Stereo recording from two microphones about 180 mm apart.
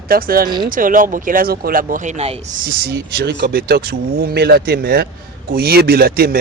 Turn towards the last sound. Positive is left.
turn(degrees=-55)  # may be behind; listen again after turning